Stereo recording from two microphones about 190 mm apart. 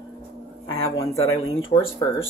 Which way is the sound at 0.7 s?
25° left (ahead or behind).